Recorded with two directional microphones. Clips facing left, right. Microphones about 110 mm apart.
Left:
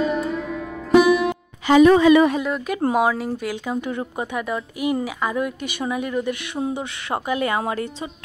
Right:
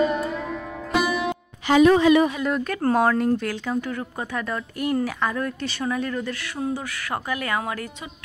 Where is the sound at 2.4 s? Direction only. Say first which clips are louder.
Even; centre (ahead or behind).